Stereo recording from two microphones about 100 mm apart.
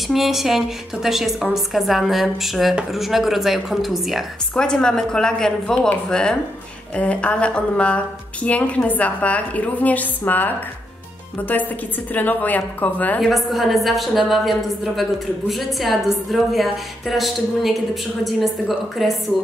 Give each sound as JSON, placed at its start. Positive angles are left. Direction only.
{"t": 0.1, "sound": "a woman's voice", "side_deg": 0}
{"t": 13.2, "sound": "a woman's voice", "side_deg": 0}